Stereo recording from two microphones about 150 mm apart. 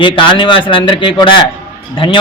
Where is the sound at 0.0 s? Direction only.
30° left (ahead or behind).